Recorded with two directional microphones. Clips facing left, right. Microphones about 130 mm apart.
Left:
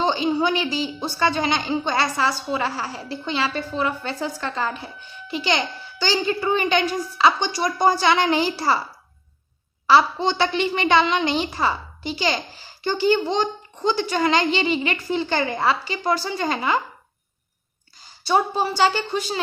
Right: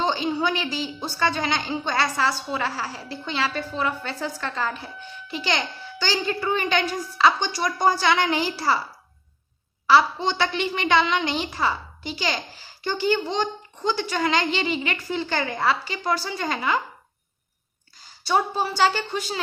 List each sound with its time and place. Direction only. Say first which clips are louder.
0.0 s a woman's voice: left 3 dB; 20° left (ahead or behind)
9.8 s a woman's voice: left 2 dB; 25° left (ahead or behind)
18.3 s a woman's voice: left 2 dB; 20° left (ahead or behind)